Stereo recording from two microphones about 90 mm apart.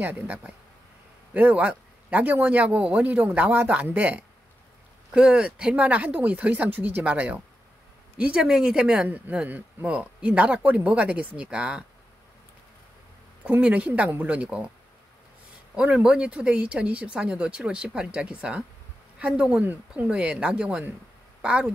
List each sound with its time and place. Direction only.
0.0 s a man's voice: 20° right (ahead or behind)
13.5 s a man's voice: 15° right (ahead or behind)
15.7 s a man's voice: 10° right (ahead or behind)